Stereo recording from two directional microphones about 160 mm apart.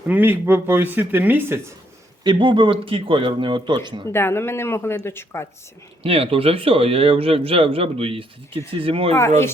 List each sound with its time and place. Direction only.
0.1 s speech: 10° right (ahead or behind)
2.2 s speech: 30° right (ahead or behind)
4.1 s speech: 15° left (ahead or behind)
6.0 s a man's voice: 35° right (ahead or behind)